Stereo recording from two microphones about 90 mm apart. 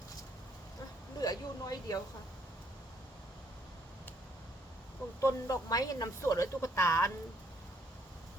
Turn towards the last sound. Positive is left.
turn(degrees=30)  # may be behind; listen again after turning